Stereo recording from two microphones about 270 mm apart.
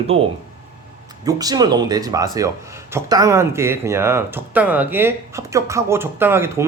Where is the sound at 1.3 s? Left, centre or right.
Centre.